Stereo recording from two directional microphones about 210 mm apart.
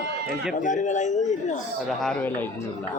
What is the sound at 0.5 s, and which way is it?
A man's voice, 35° left (ahead or behind).